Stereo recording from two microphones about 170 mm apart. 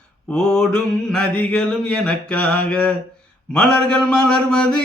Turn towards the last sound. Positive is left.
turn(degrees=5)  # may be behind; listen again after turning